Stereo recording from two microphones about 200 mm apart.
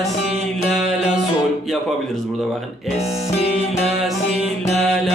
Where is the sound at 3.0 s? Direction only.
30° left (ahead or behind).